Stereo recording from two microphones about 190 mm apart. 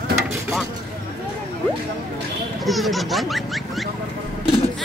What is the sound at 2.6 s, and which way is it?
Speech, centre (ahead or behind).